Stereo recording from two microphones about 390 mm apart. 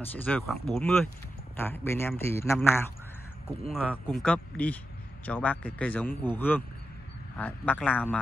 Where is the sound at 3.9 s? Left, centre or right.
Centre.